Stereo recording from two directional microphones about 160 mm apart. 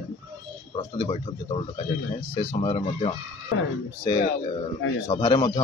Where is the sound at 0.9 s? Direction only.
35° left (ahead or behind).